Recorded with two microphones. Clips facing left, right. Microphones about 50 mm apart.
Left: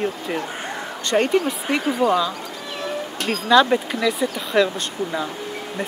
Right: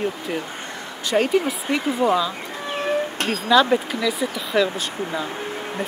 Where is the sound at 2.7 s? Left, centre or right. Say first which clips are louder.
Right 5 dB; right.